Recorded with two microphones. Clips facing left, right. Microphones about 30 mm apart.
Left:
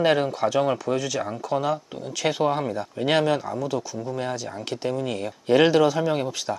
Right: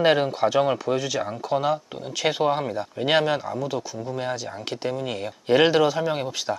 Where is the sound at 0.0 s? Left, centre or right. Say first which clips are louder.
Right 1 dB; centre.